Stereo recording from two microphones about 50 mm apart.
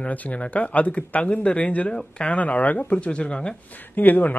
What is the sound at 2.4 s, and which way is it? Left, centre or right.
Speech, left.